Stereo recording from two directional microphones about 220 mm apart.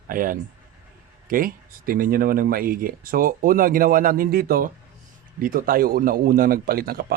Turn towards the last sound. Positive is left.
turn(degrees=-40)  # may be behind; listen again after turning